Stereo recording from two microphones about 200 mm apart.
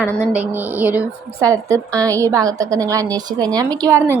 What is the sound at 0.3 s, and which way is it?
A woman's voice, 10° right (ahead or behind).